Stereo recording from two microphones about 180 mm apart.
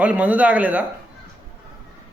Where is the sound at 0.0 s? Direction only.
5° right (ahead or behind).